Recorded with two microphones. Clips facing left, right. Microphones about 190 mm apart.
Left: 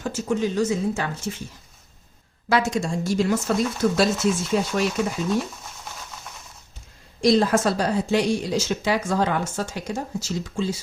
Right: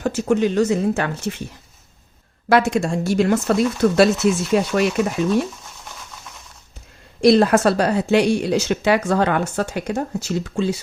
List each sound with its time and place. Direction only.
0.0 s speech: 65° right (ahead or behind)
2.5 s speech: 65° right (ahead or behind)
7.2 s speech: 65° right (ahead or behind)